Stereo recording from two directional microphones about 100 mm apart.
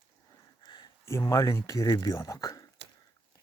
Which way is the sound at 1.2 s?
35° left (ahead or behind).